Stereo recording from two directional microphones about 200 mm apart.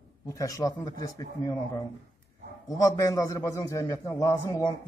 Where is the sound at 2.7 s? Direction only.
15° left (ahead or behind).